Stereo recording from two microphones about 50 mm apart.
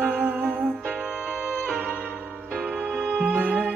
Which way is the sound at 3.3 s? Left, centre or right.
Right.